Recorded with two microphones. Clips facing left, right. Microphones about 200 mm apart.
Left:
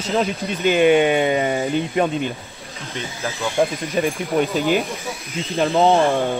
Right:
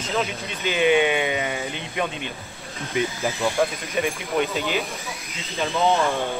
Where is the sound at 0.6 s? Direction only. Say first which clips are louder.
Left 5 dB; 50° left (ahead or behind).